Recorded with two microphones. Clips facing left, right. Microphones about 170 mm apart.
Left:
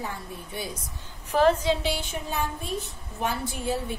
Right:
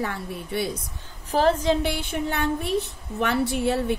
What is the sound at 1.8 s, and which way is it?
A woman's voice, 60° right (ahead or behind).